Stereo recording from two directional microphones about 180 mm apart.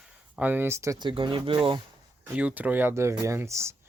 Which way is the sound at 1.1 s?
25° right (ahead or behind).